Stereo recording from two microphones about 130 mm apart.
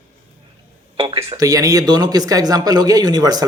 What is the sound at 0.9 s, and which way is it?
Speech, 45° right (ahead or behind).